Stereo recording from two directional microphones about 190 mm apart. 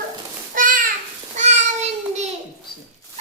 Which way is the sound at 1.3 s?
35° right (ahead or behind).